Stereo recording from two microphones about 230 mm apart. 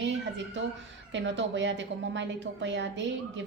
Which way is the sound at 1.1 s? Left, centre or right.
Right.